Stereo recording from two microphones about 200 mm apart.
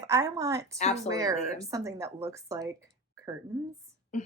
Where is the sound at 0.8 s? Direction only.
35° left (ahead or behind).